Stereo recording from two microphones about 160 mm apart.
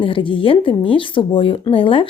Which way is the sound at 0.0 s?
30° left (ahead or behind).